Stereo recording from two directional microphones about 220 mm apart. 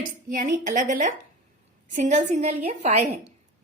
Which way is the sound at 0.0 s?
35° right (ahead or behind).